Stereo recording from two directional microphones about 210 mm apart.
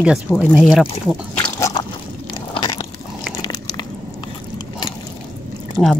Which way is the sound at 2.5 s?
20° left (ahead or behind).